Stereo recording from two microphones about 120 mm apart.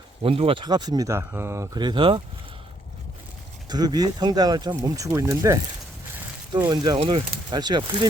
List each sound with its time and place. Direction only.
0.2 s speech: 50° right (ahead or behind); by 1.8 s 25° right (ahead or behind)
1.8 s speech: 40° right (ahead or behind)
3.7 s speech: 35° right (ahead or behind)
6.7 s speech: 35° right (ahead or behind)